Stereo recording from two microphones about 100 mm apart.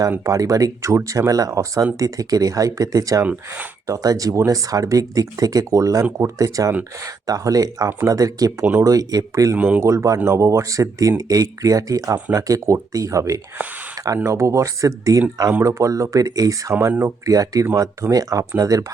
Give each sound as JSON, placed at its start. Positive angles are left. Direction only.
{"t": 0.3, "sound": "speech", "side_deg": -35}
{"t": 3.2, "sound": "speech", "side_deg": -15}
{"t": 3.8, "sound": "speech", "side_deg": -35}
{"t": 9.6, "sound": "speech", "side_deg": -15}
{"t": 9.8, "sound": "speech", "side_deg": -30}
{"t": 16.7, "sound": "speech", "side_deg": -20}